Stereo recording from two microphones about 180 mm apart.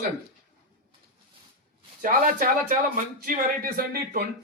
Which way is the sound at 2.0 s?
50° right (ahead or behind).